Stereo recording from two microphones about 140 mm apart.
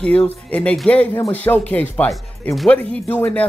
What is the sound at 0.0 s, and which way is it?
Speech, 10° left (ahead or behind).